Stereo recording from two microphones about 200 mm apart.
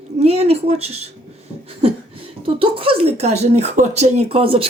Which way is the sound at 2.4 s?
25° right (ahead or behind).